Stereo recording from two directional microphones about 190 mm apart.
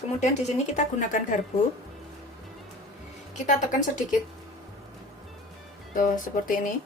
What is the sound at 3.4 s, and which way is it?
Speech, 40° left (ahead or behind).